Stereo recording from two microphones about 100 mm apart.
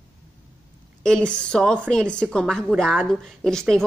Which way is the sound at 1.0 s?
10° left (ahead or behind).